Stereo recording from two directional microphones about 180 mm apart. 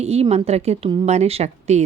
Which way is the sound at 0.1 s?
35° right (ahead or behind).